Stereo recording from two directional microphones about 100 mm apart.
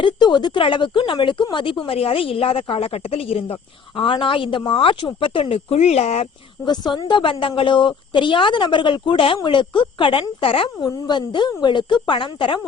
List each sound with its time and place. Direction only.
0.0 s speech: 50° left (ahead or behind); by 6.2 s 90° left
6.7 s speech: 50° left (ahead or behind); by 10.7 s 65° left (ahead or behind)
10.8 s a woman's voice: 45° left (ahead or behind)